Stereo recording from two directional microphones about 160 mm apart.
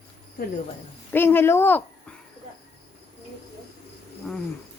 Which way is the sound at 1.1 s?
15° left (ahead or behind).